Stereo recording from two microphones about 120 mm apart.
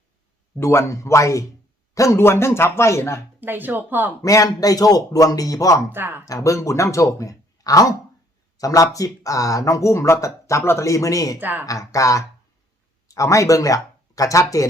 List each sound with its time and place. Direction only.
0.5 s a man's voice: 20° left (ahead or behind)
3.4 s speech: 15° right (ahead or behind)
4.2 s a man's voice: 30° left (ahead or behind)
5.9 s speech: 20° right (ahead or behind)
6.2 s a man's voice: 30° left (ahead or behind)
11.3 s speech: 15° right (ahead or behind)
11.6 s a man's voice: 30° left (ahead or behind)